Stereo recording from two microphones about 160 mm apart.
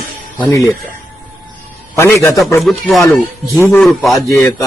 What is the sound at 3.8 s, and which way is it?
Speech, centre (ahead or behind).